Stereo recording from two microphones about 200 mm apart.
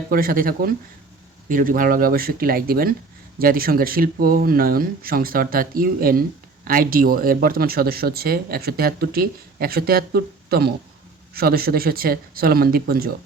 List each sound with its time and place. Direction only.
0.1 s speech: 45° right (ahead or behind)